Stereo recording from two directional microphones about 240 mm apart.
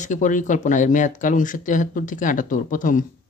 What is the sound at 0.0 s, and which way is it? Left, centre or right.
Speech, left.